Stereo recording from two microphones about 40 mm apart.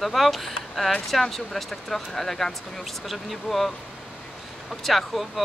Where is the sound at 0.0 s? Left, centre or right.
Centre.